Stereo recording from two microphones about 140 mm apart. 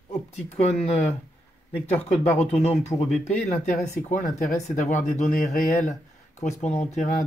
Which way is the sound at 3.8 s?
60° left (ahead or behind).